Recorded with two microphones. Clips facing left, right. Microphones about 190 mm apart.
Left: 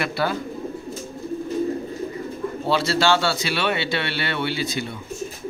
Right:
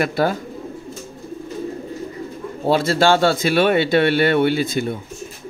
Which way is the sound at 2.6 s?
50° right (ahead or behind).